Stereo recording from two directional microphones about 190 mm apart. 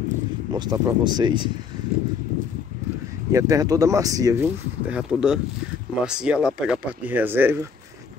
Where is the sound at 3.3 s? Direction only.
20° right (ahead or behind).